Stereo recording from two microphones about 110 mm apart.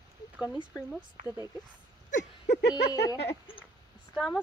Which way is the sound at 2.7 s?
35° left (ahead or behind).